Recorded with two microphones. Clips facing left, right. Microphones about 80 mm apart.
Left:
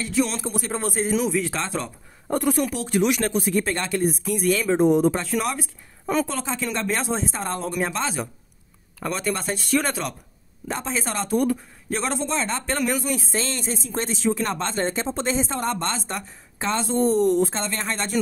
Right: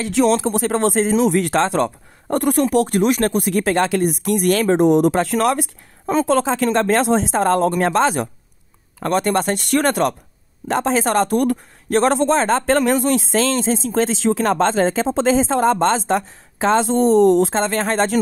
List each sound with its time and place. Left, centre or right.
0.0 s speech: right
9.0 s speech: right
10.7 s a man's voice: right